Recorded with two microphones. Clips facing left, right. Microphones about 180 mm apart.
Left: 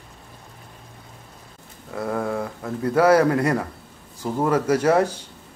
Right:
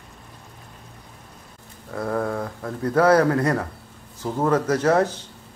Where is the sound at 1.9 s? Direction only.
10° left (ahead or behind).